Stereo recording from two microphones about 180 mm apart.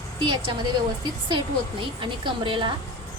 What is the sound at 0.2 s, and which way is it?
Speech, 25° right (ahead or behind).